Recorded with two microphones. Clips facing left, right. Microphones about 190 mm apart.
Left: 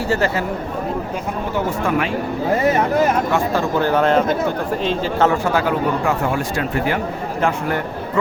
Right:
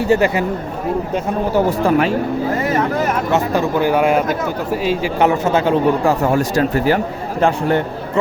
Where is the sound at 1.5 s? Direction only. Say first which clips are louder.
Right 5 dB; 40° right (ahead or behind).